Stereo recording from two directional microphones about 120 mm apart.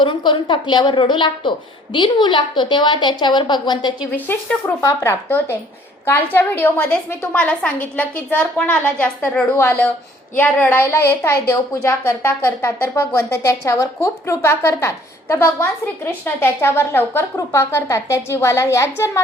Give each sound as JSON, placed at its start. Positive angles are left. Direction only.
{"t": 0.0, "sound": "a woman's voice", "side_deg": 45}
{"t": 4.3, "sound": "a woman's voice", "side_deg": 20}